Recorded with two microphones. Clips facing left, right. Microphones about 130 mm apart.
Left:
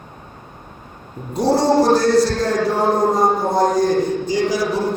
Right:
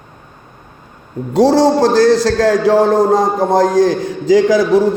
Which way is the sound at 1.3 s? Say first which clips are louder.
Right 5 dB; 90° right.